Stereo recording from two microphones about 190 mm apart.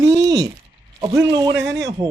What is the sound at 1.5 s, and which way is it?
Speech, 70° right (ahead or behind).